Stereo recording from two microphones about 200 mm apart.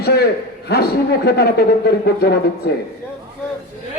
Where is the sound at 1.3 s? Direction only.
55° left (ahead or behind).